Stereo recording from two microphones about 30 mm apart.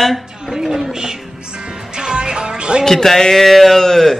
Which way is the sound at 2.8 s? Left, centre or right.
Centre.